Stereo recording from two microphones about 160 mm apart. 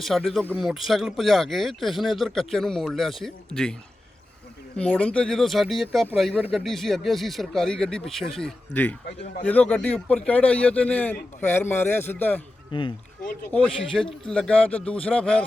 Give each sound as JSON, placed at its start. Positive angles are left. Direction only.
{"t": 0.0, "sound": "speech", "side_deg": 0}
{"t": 4.8, "sound": "speech", "side_deg": 10}
{"t": 12.7, "sound": "speech", "side_deg": 30}
{"t": 13.5, "sound": "speech", "side_deg": 5}